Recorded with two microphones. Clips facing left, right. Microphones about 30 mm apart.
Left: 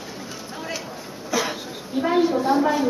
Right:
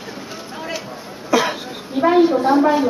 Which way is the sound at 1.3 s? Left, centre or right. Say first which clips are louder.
Right 7 dB; right.